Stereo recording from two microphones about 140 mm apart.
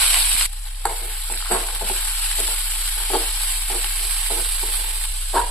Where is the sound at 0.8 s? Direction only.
10° left (ahead or behind).